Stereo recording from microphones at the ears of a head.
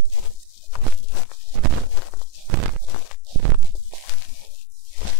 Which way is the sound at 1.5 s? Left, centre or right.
Right.